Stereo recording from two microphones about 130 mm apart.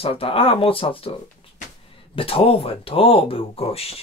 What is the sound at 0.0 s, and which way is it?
Speech, 45° left (ahead or behind).